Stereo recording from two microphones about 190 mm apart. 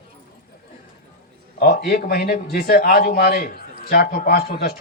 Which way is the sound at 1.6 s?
55° left (ahead or behind).